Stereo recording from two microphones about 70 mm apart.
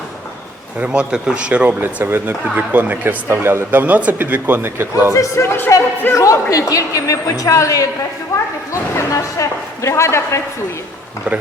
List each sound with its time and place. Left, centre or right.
0.8 s speech: centre
3.2 s speech: right
5.1 s a woman's voice: left